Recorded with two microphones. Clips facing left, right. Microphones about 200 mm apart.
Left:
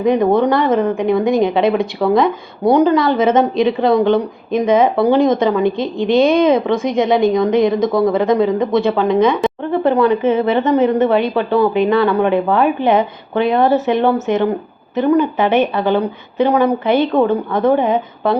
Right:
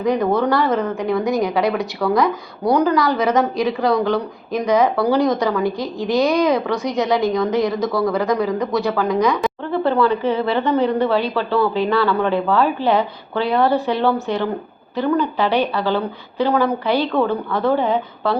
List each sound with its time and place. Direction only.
0.0 s a woman's voice: 20° left (ahead or behind)